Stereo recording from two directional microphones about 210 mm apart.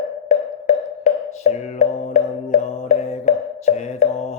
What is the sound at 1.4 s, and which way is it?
Music, 35° left (ahead or behind).